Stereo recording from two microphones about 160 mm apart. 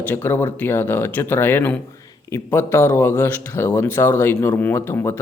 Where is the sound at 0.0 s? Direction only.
15° left (ahead or behind).